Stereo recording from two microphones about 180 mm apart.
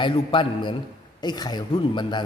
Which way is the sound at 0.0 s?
30° left (ahead or behind).